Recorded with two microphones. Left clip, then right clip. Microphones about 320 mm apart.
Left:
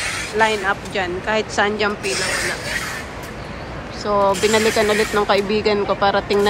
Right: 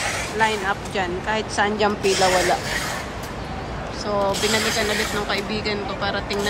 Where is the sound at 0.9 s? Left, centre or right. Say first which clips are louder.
Left 3 dB; centre.